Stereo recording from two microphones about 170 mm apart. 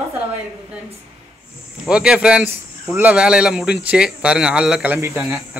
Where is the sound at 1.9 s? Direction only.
5° right (ahead or behind).